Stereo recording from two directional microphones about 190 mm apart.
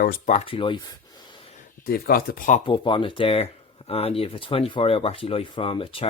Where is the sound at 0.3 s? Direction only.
30° left (ahead or behind).